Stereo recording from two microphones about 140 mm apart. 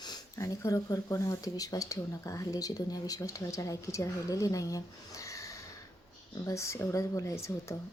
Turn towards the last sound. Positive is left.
turn(degrees=20)  # may be behind; listen again after turning